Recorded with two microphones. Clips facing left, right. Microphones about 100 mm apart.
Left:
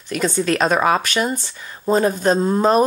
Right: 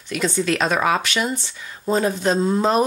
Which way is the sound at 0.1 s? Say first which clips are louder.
Left 2 dB; 45° left (ahead or behind).